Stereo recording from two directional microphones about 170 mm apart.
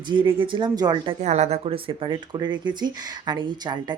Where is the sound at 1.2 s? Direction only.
40° right (ahead or behind); by 3.9 s 25° right (ahead or behind).